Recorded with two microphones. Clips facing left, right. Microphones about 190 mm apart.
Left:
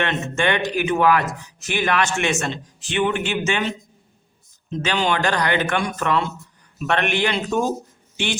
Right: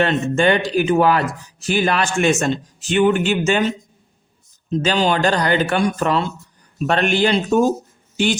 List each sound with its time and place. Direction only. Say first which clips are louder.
0.0 s speech: right 6 dB; 35° right (ahead or behind)